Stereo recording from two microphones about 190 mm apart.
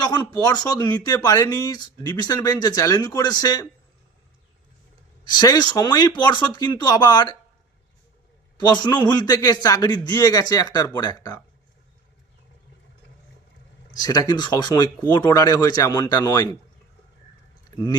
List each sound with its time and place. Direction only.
0.0 s speech: 20° left (ahead or behind)
5.2 s speech: 20° left (ahead or behind)
8.5 s speech: 20° left (ahead or behind)
13.9 s speech: 20° left (ahead or behind)